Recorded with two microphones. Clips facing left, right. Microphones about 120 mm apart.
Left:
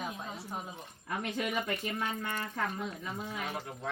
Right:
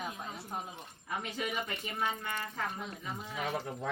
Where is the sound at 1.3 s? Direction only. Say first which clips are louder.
Left 4 dB; 55° left (ahead or behind).